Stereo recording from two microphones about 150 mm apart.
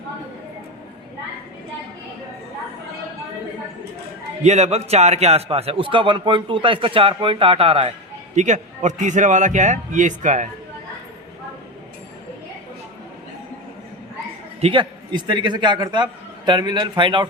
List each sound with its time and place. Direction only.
4.4 s a man's voice: 45° right (ahead or behind)
8.4 s a man's voice: 55° right (ahead or behind)
14.6 s a man's voice: 35° right (ahead or behind)